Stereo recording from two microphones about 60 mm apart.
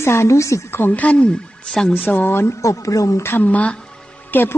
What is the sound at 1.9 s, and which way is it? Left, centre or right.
Speech, left.